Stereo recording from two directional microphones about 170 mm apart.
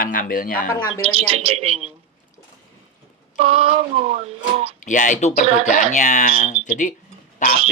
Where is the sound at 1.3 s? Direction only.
35° right (ahead or behind).